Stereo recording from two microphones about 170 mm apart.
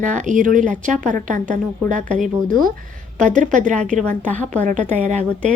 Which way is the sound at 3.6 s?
45° right (ahead or behind).